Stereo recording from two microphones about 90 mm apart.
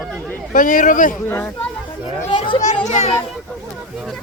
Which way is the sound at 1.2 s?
30° left (ahead or behind).